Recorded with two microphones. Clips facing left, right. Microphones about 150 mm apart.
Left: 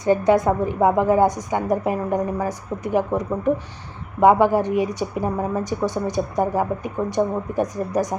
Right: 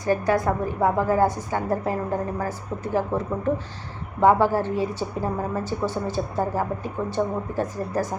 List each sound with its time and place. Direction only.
0.0 s a woman's voice: 20° left (ahead or behind)